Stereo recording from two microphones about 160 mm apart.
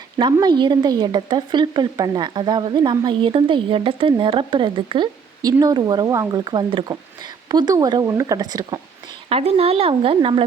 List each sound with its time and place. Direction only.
0.2 s a woman's voice: 25° right (ahead or behind)
9.3 s speech: 40° right (ahead or behind)